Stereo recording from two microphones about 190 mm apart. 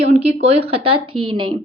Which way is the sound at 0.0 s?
35° right (ahead or behind).